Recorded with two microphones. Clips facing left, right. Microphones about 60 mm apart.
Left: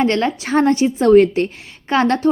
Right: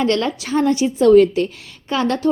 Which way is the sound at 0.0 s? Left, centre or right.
Left.